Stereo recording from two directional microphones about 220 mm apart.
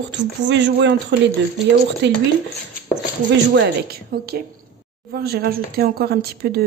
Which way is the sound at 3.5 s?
45° right (ahead or behind).